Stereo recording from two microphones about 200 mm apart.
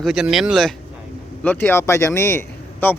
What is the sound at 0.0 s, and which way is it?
Speech, centre (ahead or behind).